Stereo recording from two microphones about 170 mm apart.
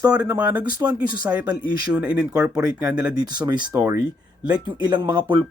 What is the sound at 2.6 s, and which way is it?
Speech, 20° right (ahead or behind).